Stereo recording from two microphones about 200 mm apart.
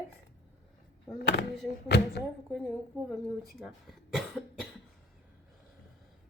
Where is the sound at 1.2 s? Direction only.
60° left (ahead or behind).